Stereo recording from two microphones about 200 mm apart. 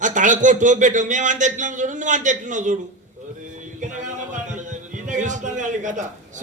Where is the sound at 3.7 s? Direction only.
40° right (ahead or behind).